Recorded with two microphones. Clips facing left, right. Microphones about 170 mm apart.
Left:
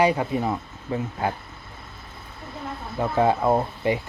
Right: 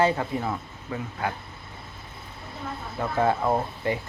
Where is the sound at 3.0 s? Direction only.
15° left (ahead or behind).